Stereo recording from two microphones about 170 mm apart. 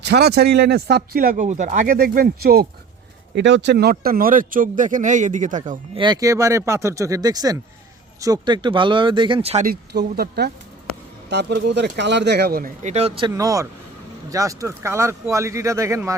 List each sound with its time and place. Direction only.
0.0 s speech: 75° right (ahead or behind)
3.3 s speech: 90° right; by 5.8 s 50° right (ahead or behind)
5.9 s speech: 25° right (ahead or behind)
9.6 s speech: 65° right (ahead or behind)
11.3 s speech: 80° right; by 12.7 s 65° right (ahead or behind)
12.8 s speech: 40° right (ahead or behind)
13.3 s speech: 20° right (ahead or behind)